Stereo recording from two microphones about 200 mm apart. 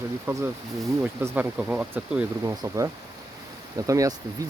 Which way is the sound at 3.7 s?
15° right (ahead or behind).